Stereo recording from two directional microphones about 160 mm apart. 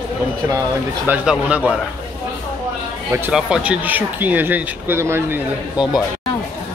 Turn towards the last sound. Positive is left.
turn(degrees=-15)  # may be behind; listen again after turning